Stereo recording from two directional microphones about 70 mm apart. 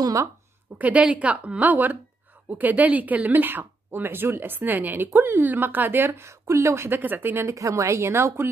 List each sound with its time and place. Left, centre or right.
0.0 s speech: right
0.7 s speech: centre; by 7.0 s right
7.0 s speech: right
7.5 s speech: right